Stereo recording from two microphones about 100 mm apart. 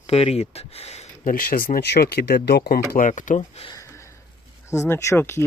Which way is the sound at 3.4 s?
65° left (ahead or behind).